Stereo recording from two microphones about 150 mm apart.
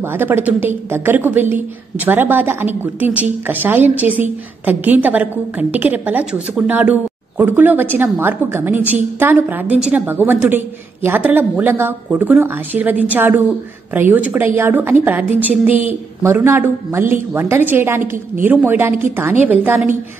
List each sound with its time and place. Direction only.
0.0 s a woman's voice: 15° right (ahead or behind)